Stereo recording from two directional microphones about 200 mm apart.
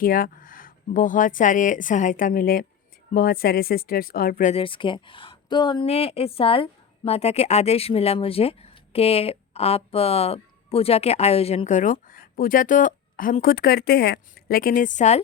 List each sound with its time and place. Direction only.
0.0 s speech: 45° left (ahead or behind)
4.5 s speech: 25° left (ahead or behind)